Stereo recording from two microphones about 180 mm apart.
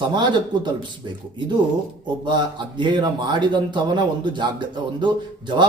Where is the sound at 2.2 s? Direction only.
25° right (ahead or behind).